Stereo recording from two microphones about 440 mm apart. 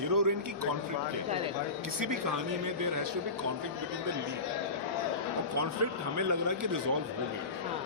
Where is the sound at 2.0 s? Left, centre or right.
Right.